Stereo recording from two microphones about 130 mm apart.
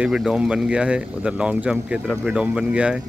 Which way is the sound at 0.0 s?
5° right (ahead or behind).